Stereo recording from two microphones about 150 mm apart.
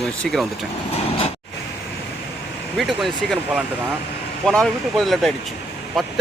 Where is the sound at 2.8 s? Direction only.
Centre (ahead or behind).